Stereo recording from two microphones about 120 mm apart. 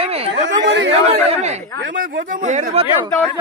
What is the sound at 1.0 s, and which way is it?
Speech, 70° right (ahead or behind).